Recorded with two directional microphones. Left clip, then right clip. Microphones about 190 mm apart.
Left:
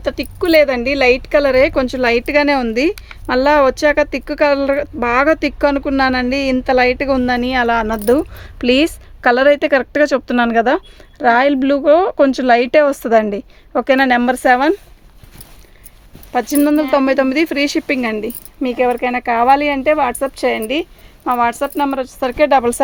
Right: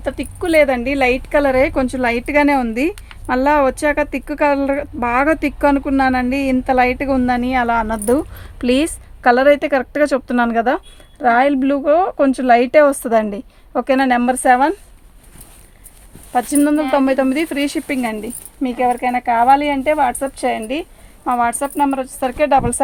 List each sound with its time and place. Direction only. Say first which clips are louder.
0.0 s speech: left 3 dB; 50° left (ahead or behind)
16.3 s speech: left 1 dB; 50° left (ahead or behind)